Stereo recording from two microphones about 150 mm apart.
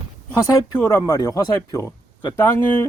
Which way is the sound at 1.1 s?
25° left (ahead or behind).